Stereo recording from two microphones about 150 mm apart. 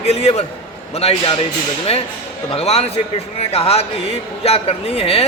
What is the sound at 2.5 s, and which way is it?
A man's voice, 45° left (ahead or behind).